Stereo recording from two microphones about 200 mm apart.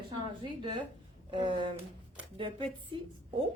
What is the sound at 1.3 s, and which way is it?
A woman's voice, 25° right (ahead or behind).